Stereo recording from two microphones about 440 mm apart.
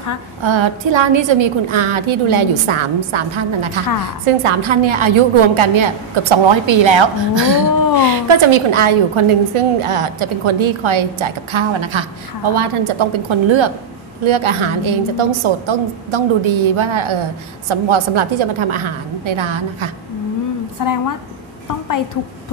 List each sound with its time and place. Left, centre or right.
0.4 s a woman's voice: right
20.8 s a woman's voice: left